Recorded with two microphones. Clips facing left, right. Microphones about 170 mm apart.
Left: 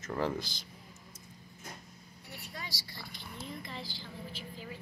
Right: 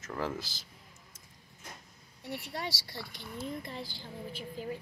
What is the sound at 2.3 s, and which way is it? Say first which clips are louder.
Speech: right 8 dB; 75° right (ahead or behind).